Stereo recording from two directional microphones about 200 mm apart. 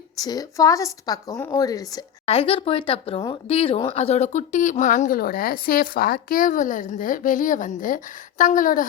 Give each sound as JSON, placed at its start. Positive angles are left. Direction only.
{"t": 0.2, "sound": "a woman's voice", "side_deg": 20}
{"t": 2.2, "sound": "speech", "side_deg": 30}